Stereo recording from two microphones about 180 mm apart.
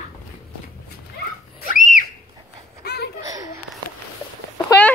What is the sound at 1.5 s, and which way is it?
Whistle, 45° left (ahead or behind).